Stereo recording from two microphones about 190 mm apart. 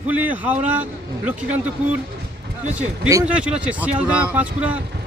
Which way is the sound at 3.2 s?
5° right (ahead or behind).